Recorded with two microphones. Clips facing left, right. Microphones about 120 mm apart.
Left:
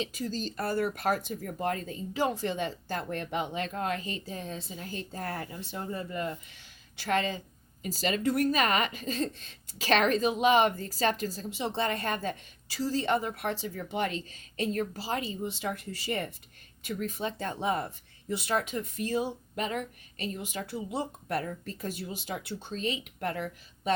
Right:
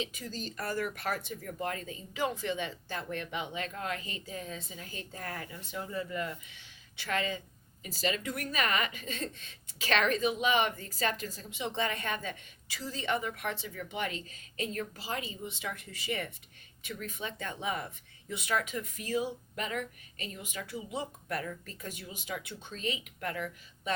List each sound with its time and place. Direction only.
0.0 s speech: 35° left (ahead or behind)